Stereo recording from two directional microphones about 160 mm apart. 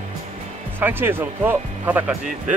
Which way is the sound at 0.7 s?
15° right (ahead or behind).